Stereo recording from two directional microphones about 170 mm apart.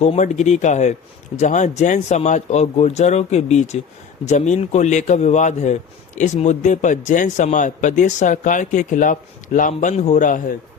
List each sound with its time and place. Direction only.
0.0 s speech: 40° left (ahead or behind)